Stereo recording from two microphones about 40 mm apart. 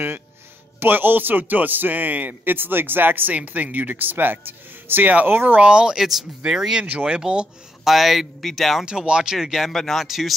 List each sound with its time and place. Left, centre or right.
0.7 s a man's voice: right
3.3 s a man's voice: right
5.6 s speech: right
5.9 s speech: centre; by 7.4 s right
7.8 s speech: centre
8.8 s speech: right
9.7 s speech: centre
10.0 s speech: centre